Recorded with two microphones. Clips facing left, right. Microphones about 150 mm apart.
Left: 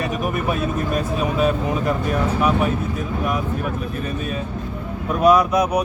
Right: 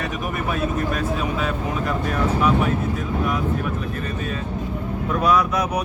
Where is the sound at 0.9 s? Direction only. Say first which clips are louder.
Left 3 dB; 15° left (ahead or behind).